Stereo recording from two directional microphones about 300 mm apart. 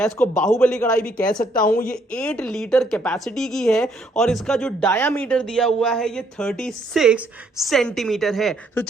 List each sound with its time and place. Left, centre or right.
0.0 s speech: centre
1.5 s a woman's voice: left
2.0 s speech: centre